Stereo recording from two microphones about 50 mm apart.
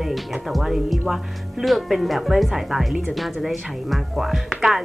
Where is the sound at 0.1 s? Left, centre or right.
Centre.